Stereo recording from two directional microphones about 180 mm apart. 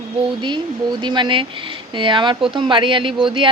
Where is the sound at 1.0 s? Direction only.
25° right (ahead or behind).